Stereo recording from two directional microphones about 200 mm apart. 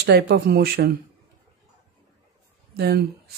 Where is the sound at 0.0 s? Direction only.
55° right (ahead or behind).